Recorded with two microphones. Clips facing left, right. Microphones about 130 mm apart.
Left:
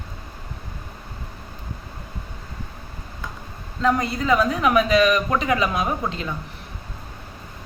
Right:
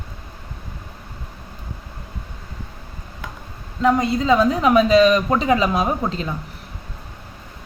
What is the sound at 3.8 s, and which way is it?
A woman's voice, 20° right (ahead or behind).